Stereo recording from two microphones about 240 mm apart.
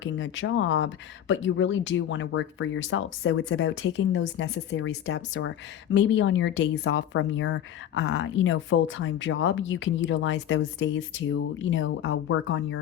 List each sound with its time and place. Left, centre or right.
0.0 s speech: left